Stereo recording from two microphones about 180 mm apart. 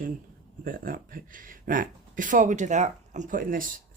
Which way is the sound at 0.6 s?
50° right (ahead or behind).